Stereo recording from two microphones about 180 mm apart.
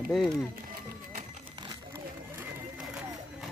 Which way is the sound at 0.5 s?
50° right (ahead or behind).